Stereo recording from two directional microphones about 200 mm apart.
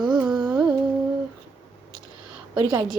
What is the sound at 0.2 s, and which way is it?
Humming, 5° right (ahead or behind).